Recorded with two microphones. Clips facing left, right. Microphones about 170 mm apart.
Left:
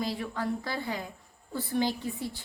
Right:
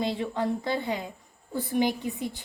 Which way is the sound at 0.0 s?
25° right (ahead or behind).